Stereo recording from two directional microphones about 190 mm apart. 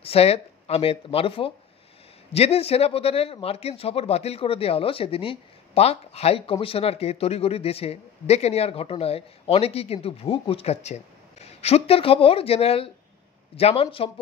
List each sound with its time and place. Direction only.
0.0 s speech: 30° left (ahead or behind)